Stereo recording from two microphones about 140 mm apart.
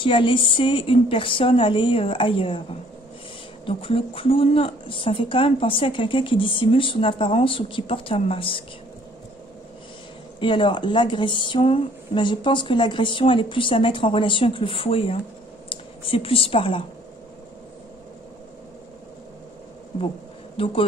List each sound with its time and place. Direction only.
0.0 s a woman's voice: 35° left (ahead or behind)
3.6 s a woman's voice: 40° left (ahead or behind)
10.4 s a woman's voice: 35° left (ahead or behind)
20.5 s a man's voice: 40° left (ahead or behind)